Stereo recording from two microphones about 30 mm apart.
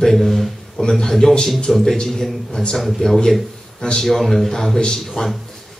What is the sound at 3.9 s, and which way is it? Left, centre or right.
Speech, centre.